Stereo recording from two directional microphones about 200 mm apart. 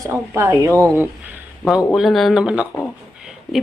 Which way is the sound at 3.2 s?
Centre (ahead or behind).